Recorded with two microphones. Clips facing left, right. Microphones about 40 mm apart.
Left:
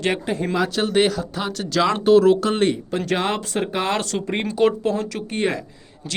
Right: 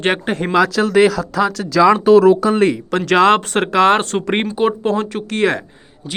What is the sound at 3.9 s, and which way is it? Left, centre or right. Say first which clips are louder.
Speech: right 7 dB; right.